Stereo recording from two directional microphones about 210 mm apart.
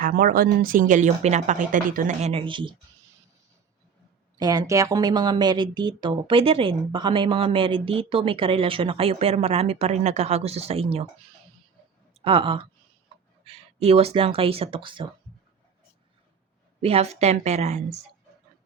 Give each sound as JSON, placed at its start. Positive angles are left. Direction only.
{"t": 0.0, "sound": "a woman's voice", "side_deg": -45}
{"t": 4.4, "sound": "speech", "side_deg": -20}
{"t": 12.2, "sound": "speech", "side_deg": -25}
{"t": 16.8, "sound": "a woman's voice", "side_deg": -30}